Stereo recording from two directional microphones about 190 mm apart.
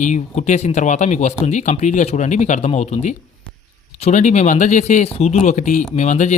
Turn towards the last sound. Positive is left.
turn(degrees=40)  # may be behind; listen again after turning